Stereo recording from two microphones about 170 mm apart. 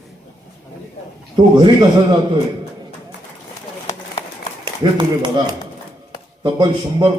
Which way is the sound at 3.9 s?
40° left (ahead or behind).